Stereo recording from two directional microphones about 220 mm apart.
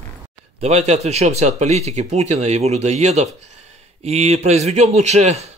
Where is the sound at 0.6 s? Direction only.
30° right (ahead or behind).